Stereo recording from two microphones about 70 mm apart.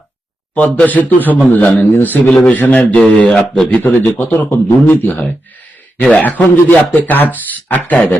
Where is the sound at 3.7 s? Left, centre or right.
Left.